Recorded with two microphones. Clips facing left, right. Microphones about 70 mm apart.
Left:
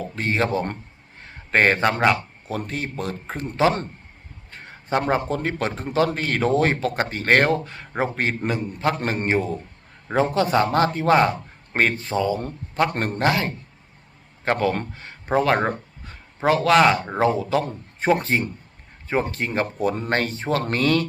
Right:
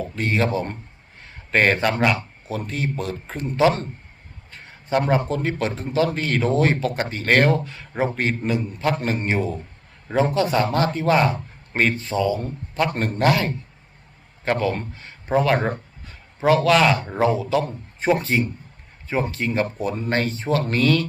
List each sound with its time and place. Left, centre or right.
0.2 s a man's voice: left
2.5 s a man's voice: left
13.2 s a man's voice: left
14.4 s a man's voice: left
14.9 s a sound: left
16.6 s a man's voice: left
18.1 s a man's voice: left